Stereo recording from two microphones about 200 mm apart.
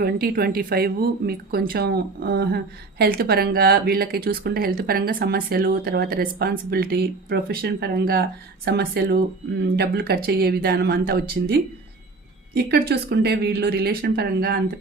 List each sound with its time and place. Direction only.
0.0 s speech: 50° right (ahead or behind)